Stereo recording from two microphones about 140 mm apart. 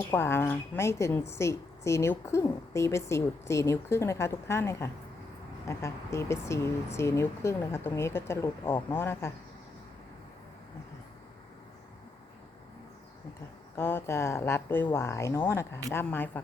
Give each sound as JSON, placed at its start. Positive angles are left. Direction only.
{"t": 0.1, "sound": "a woman's voice", "side_deg": 15}
{"t": 13.7, "sound": "a woman's voice", "side_deg": 15}